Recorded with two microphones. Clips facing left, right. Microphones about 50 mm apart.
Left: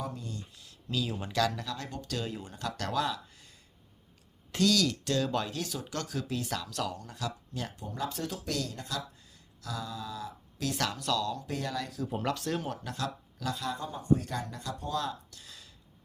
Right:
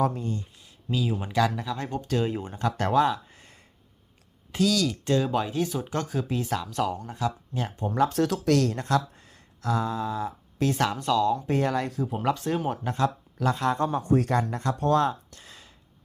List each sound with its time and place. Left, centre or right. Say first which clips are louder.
0.0 s speech: right 12 dB; right
0.6 s speech: right 4 dB; centre
4.5 s speech: right 3 dB; centre
5.0 s speech: right 6 dB; centre
7.9 s speech: right 14 dB; right
8.2 s speech: right 12 dB; right
9.6 s speech: right 11 dB; right
12.0 s speech: right 5 dB; centre
12.3 s speech: right 6 dB; right
14.3 s speech: right 11 dB; right
15.0 s a sound: right 9 dB; right